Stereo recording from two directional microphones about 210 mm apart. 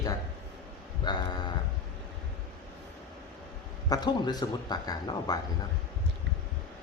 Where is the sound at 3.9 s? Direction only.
20° left (ahead or behind).